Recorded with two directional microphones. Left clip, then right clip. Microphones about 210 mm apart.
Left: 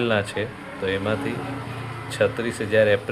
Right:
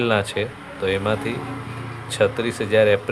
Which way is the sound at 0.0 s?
20° right (ahead or behind).